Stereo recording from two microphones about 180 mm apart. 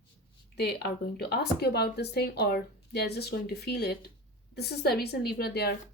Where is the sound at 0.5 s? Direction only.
65° left (ahead or behind).